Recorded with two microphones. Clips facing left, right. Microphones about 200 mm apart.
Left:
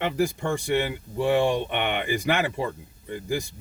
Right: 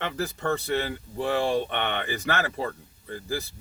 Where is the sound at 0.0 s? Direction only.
10° left (ahead or behind).